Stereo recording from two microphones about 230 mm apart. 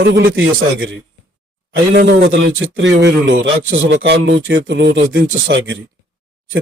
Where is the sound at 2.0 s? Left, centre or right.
Right.